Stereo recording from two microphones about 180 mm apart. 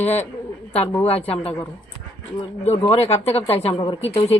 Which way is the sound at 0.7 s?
10° left (ahead or behind).